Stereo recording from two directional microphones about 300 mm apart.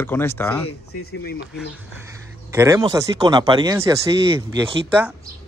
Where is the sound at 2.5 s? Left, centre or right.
Centre.